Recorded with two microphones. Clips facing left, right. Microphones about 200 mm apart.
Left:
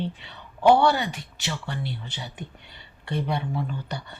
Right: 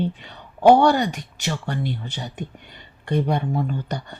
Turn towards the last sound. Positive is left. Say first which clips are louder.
# right 5 dB
turn(degrees=-45)  # may be behind; listen again after turning